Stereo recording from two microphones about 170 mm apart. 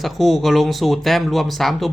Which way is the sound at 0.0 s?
Centre (ahead or behind).